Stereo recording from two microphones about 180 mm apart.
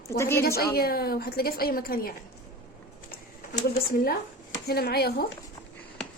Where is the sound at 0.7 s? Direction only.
60° left (ahead or behind).